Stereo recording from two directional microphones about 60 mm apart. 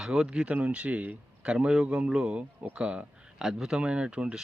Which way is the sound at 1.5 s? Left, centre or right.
Centre.